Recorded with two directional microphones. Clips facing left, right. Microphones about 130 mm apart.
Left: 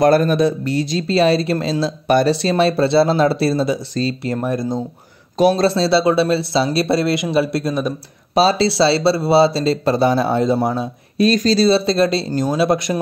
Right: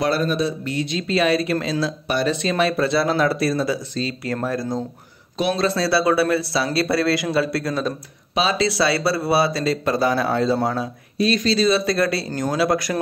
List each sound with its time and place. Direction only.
0.0 s a man's voice: 50° left (ahead or behind)
0.7 s speech: 35° left (ahead or behind)
2.0 s a man's voice: 50° left (ahead or behind)
2.3 s speech: 30° left (ahead or behind)
3.9 s speech: 35° left (ahead or behind)
4.3 s speech: 20° left (ahead or behind)
5.4 s speech: 35° left (ahead or behind); by 7.9 s 20° left (ahead or behind)
8.4 s speech: 35° left (ahead or behind)
11.2 s speech: 40° left (ahead or behind); by 13.0 s 25° left (ahead or behind)